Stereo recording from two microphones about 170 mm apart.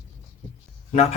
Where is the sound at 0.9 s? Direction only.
40° left (ahead or behind).